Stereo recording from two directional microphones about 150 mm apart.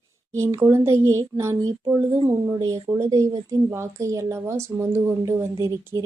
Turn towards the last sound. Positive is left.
turn(degrees=-20)  # may be behind; listen again after turning